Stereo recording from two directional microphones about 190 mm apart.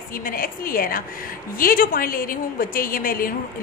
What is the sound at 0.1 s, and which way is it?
A woman's voice, 50° left (ahead or behind).